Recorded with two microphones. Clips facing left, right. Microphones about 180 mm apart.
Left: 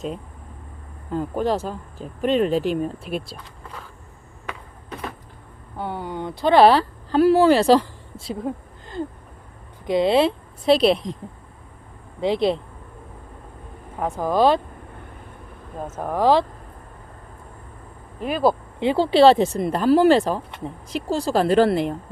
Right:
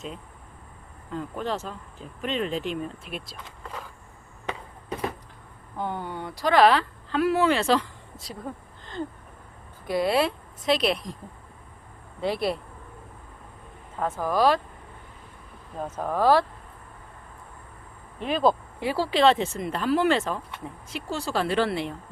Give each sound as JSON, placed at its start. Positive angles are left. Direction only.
{"t": 1.1, "sound": "speech", "side_deg": 40}
{"t": 3.0, "sound": "speech", "side_deg": 0}
{"t": 5.7, "sound": "speech", "side_deg": 10}
{"t": 9.8, "sound": "a woman's voice", "side_deg": 20}
{"t": 10.9, "sound": "speech", "side_deg": 0}
{"t": 12.2, "sound": "speech", "side_deg": 20}
{"t": 14.0, "sound": "speech", "side_deg": 20}
{"t": 16.0, "sound": "speech", "side_deg": 15}
{"t": 18.2, "sound": "speech", "side_deg": 5}
{"t": 18.8, "sound": "speech", "side_deg": 25}